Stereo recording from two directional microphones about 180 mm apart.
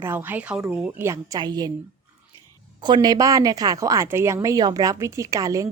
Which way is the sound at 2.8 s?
25° right (ahead or behind).